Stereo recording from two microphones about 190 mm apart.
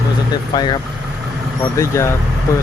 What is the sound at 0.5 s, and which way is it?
Speech, 20° left (ahead or behind).